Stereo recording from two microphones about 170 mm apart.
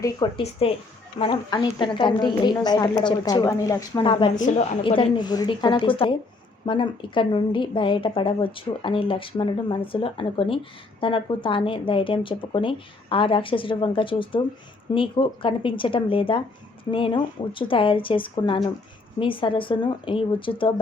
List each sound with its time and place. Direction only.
0.0 s a woman's voice: 30° left (ahead or behind)